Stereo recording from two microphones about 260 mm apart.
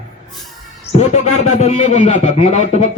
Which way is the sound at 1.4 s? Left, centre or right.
Left.